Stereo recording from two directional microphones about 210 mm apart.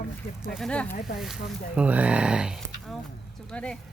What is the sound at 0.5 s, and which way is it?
Speech, 5° left (ahead or behind).